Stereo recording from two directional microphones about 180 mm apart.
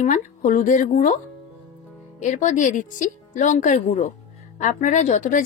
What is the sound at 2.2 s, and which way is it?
Speech, 45° left (ahead or behind).